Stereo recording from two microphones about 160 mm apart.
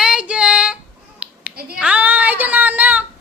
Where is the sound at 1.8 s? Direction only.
10° right (ahead or behind).